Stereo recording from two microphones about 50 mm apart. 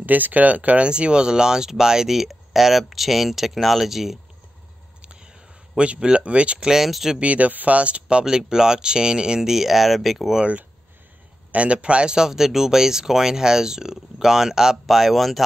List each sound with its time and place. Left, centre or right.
0.0 s speech: right; by 4.2 s centre
5.0 s a sound: centre
6.7 s speech: centre
7.2 s speech: right; by 10.4 s centre
11.5 s a man's voice: right; by 15.4 s centre